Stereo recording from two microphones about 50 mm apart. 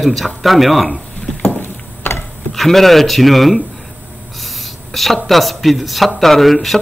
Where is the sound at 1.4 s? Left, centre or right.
Left.